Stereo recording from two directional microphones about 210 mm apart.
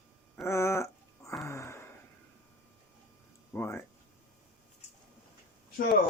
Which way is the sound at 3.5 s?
10° left (ahead or behind).